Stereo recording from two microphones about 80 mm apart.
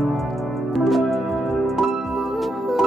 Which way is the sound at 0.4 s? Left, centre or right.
Centre.